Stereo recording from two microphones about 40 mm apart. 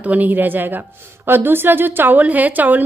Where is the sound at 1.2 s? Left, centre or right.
Right.